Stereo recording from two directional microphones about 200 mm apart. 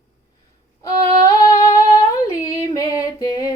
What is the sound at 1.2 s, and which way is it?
Humming, 15° left (ahead or behind).